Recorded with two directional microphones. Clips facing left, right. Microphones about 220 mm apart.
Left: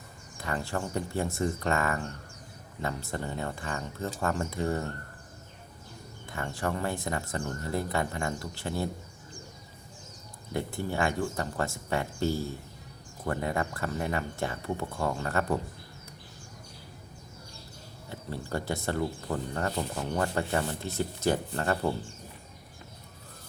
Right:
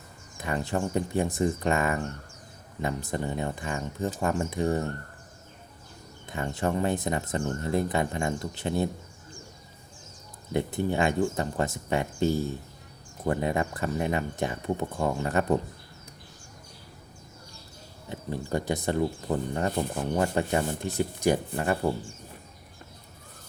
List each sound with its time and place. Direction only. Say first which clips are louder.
0.3 s speech: right 4 dB; 15° right (ahead or behind)
6.2 s speech: right 4 dB; 20° right (ahead or behind)
10.5 s speech: right 5 dB; 20° right (ahead or behind)
18.1 s speech: right 4 dB; 15° right (ahead or behind)